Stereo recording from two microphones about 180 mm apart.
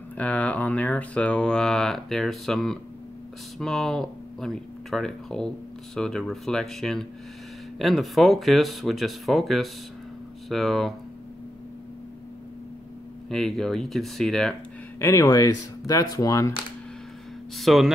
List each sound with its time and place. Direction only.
0.2 s speech: 10° left (ahead or behind)
13.3 s speech: centre (ahead or behind)
15.0 s speech: 20° left (ahead or behind)
17.6 s speech: centre (ahead or behind)